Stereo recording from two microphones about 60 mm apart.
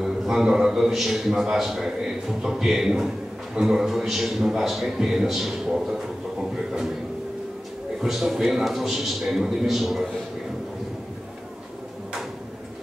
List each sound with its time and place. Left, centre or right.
0.0 s a man's voice: centre
8.0 s a man's voice: centre